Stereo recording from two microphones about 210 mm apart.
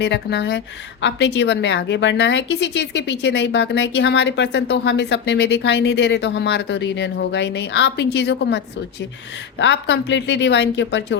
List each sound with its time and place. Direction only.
0.0 s a woman's voice: 55° left (ahead or behind)